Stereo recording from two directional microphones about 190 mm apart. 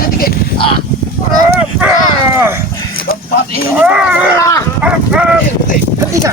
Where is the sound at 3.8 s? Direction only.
5° right (ahead or behind).